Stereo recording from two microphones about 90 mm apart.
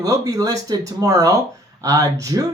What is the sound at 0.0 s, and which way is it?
Speech, 40° right (ahead or behind).